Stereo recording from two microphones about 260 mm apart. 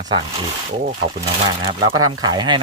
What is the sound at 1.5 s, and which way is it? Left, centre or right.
Speech, centre.